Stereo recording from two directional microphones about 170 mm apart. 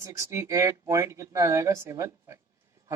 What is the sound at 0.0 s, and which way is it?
Speech, 15° right (ahead or behind).